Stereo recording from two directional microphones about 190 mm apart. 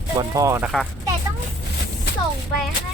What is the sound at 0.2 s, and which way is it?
Speech, 15° right (ahead or behind).